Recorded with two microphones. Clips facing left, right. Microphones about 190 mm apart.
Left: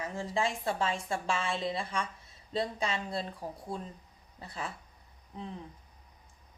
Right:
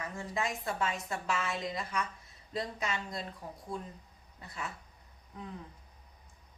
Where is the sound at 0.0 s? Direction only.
30° left (ahead or behind).